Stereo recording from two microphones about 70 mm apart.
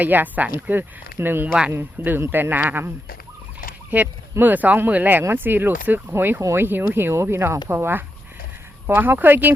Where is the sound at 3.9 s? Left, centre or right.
Right.